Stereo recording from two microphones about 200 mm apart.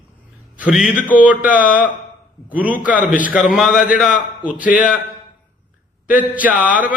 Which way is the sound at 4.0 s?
5° right (ahead or behind).